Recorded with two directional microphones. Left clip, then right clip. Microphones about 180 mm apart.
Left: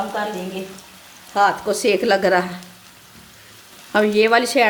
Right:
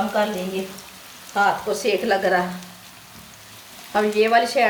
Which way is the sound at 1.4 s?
60° left (ahead or behind).